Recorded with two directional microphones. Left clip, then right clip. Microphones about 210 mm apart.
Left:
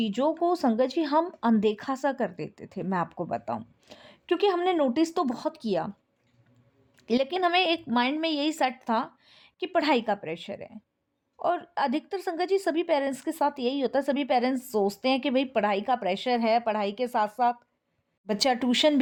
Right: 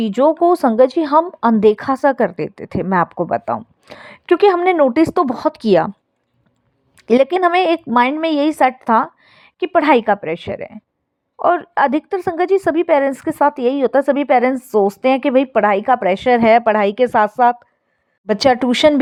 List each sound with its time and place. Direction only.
0.0 s a woman's voice: 30° right (ahead or behind)
5.6 s a woman's voice: 40° right (ahead or behind)
6.9 s a woman's voice: 30° right (ahead or behind)